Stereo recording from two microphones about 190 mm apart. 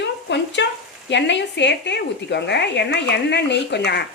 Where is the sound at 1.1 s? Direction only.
65° left (ahead or behind).